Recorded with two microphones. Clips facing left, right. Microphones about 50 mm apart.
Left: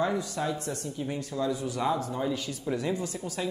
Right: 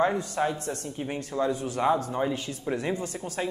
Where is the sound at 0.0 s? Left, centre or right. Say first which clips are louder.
Right 3 dB; right.